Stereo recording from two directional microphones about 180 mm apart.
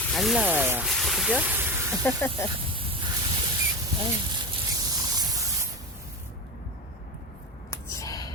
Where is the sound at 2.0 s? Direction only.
10° left (ahead or behind).